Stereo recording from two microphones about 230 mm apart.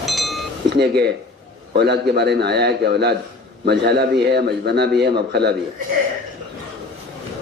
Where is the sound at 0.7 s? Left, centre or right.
Right.